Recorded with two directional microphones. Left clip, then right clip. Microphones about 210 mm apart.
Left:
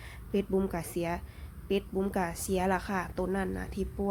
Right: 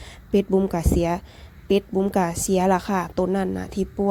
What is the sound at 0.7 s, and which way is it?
Speech, 35° right (ahead or behind).